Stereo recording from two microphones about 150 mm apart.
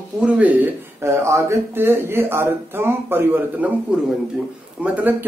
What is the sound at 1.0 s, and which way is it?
Speech, 20° right (ahead or behind).